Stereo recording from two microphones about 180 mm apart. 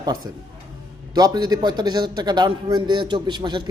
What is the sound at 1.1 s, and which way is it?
A man's voice, 20° right (ahead or behind).